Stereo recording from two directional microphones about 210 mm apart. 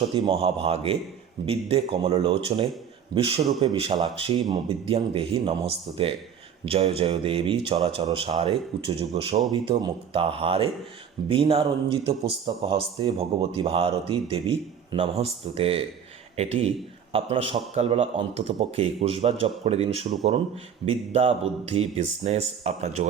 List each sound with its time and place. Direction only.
0.1 s a man's voice: 25° right (ahead or behind)
21.1 s speech: 30° right (ahead or behind)